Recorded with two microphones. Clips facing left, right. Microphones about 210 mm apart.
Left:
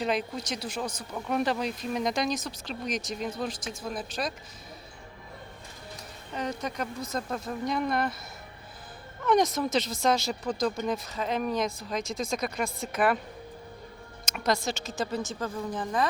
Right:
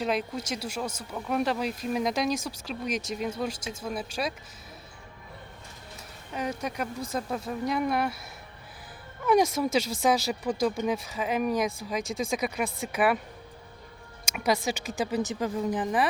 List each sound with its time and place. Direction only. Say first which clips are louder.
0.0 s speech: even; 5° right (ahead or behind)
6.3 s speech: right 1 dB; 10° right (ahead or behind)
9.2 s speech: right 1 dB; 10° right (ahead or behind)
14.3 s speech: right 1 dB; 10° right (ahead or behind)